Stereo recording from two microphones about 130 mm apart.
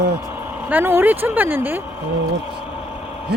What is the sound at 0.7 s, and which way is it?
Speech, 15° right (ahead or behind).